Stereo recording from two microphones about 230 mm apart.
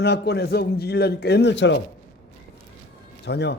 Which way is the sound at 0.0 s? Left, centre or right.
Left.